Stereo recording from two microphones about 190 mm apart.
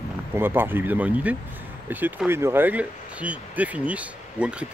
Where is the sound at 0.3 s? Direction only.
10° right (ahead or behind).